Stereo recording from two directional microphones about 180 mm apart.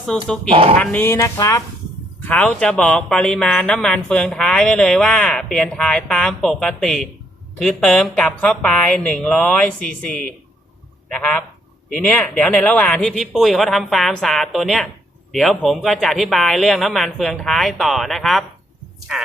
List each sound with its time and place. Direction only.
0.1 s speech: 5° left (ahead or behind); by 1.6 s 20° left (ahead or behind)
2.2 s speech: 5° left (ahead or behind)